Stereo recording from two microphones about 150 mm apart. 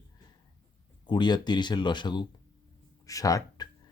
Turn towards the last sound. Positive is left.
turn(degrees=20)  # may be behind; listen again after turning